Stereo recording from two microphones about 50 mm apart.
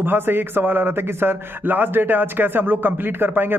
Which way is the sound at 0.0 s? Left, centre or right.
Right.